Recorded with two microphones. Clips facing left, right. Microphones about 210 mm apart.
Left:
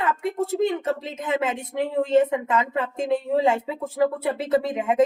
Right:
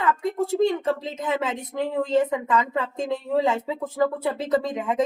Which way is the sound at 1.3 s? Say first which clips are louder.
Left 2 dB; 25° left (ahead or behind).